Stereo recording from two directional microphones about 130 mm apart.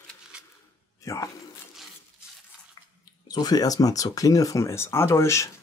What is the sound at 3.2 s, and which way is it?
Speech, 30° left (ahead or behind).